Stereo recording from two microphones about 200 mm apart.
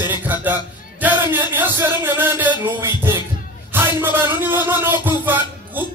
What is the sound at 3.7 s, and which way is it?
A man's voice, 10° right (ahead or behind).